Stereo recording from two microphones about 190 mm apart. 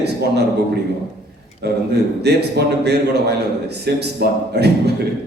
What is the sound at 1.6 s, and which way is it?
A man's voice, 60° right (ahead or behind).